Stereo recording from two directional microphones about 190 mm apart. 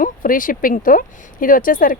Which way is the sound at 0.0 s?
45° left (ahead or behind).